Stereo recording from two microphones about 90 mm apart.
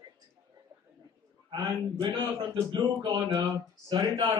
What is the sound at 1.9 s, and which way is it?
Speech, 60° right (ahead or behind).